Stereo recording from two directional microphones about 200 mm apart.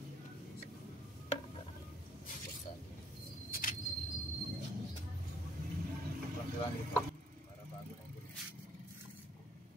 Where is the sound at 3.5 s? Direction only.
45° left (ahead or behind).